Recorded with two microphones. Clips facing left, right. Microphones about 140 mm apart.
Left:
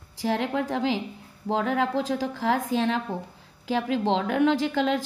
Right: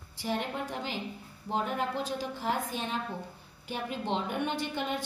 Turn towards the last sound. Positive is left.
turn(degrees=90)